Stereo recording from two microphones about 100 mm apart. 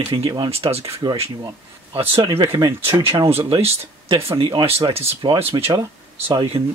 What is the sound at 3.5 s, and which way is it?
Speech, 75° right (ahead or behind).